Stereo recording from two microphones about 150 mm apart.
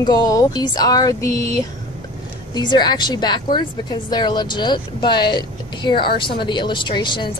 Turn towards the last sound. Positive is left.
turn(degrees=30)  # may be behind; listen again after turning